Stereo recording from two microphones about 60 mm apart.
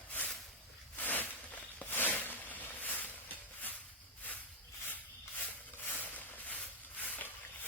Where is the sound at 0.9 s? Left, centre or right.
Left.